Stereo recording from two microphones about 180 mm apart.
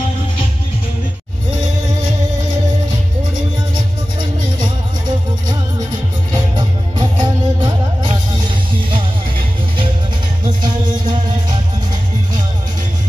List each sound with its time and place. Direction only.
3.7 s music: 25° right (ahead or behind)
10.4 s music: 25° right (ahead or behind)